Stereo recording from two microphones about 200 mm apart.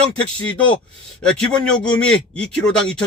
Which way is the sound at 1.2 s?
5° left (ahead or behind).